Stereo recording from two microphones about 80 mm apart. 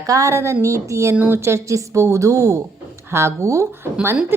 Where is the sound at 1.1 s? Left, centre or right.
Right.